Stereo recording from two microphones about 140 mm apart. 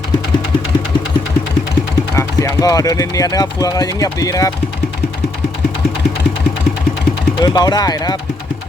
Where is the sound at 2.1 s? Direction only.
20° left (ahead or behind).